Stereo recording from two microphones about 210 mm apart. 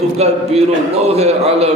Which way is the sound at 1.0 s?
30° right (ahead or behind).